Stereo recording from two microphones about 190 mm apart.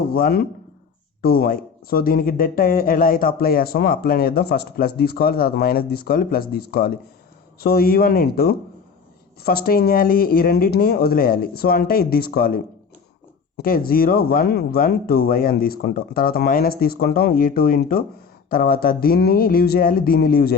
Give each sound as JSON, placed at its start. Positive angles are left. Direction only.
{"t": 0.1, "sound": "a man's voice", "side_deg": 55}